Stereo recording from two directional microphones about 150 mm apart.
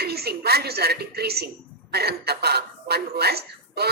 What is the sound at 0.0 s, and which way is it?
Speech, 90° right.